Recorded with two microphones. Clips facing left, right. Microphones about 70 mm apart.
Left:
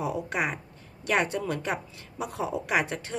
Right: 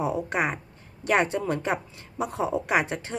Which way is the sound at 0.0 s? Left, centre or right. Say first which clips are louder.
Right 3 dB; right.